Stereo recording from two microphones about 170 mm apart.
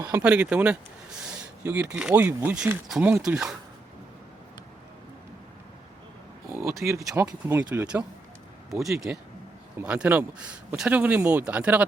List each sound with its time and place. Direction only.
0.2 s speech: 10° right (ahead or behind)
6.5 s a sound: 15° right (ahead or behind)
7.2 s speech: 15° right (ahead or behind)